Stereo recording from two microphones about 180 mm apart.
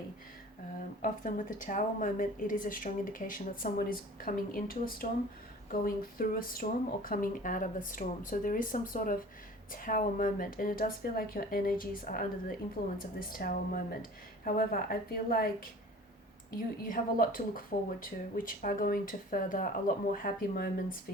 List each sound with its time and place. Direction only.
1.0 s a woman's voice: 45° left (ahead or behind)
16.8 s a woman's voice: 50° left (ahead or behind)